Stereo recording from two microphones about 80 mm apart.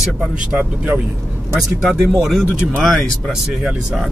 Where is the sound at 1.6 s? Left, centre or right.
Centre.